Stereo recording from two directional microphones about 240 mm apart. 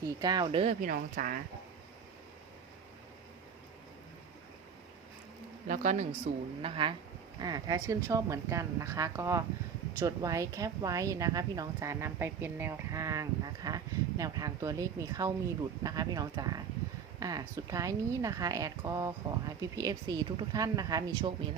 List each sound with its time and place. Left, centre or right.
0.0 s speech: centre; by 1.4 s right
5.6 s speech: right; by 21.3 s centre